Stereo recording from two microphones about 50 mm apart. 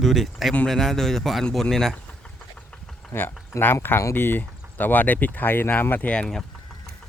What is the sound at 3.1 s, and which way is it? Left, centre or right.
Speech, left.